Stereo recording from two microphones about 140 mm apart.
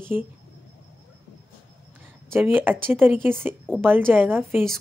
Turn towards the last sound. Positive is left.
turn(degrees=-15)  # may be behind; listen again after turning